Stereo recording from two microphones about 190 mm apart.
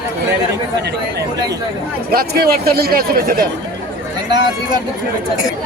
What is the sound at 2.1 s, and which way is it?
Speech, 55° right (ahead or behind).